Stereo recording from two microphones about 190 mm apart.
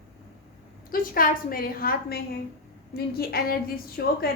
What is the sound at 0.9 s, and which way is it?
A woman's voice, 50° left (ahead or behind).